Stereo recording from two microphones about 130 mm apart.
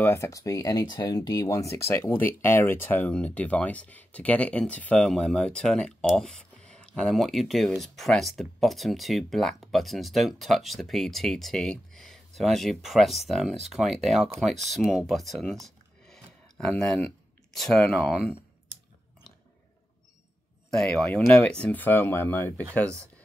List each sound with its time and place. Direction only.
0.0 s speech: 20° left (ahead or behind); by 15.4 s centre (ahead or behind)
15.6 s a sound: 5° left (ahead or behind)
20.7 s speech: 5° left (ahead or behind)